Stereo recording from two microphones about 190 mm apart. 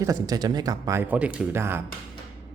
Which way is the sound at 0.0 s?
20° right (ahead or behind).